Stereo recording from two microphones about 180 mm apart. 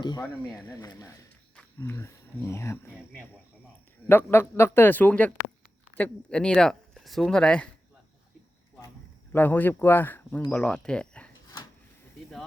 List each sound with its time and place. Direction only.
0.0 s speech: 25° left (ahead or behind)
4.0 s speech: 10° left (ahead or behind)
9.3 s speech: 10° left (ahead or behind)
10.5 s a sound: 5° left (ahead or behind)